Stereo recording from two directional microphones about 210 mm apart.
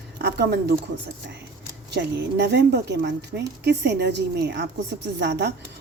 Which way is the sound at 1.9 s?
55° right (ahead or behind).